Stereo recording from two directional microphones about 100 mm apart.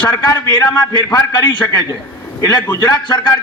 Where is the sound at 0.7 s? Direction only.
40° left (ahead or behind).